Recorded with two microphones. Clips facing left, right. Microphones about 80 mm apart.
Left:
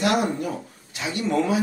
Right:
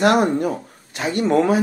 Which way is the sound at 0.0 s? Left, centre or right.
Right.